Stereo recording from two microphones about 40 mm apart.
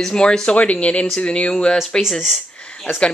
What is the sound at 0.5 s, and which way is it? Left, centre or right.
Speech, left.